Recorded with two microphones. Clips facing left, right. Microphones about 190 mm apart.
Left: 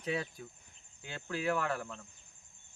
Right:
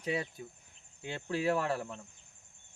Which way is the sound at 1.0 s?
25° right (ahead or behind).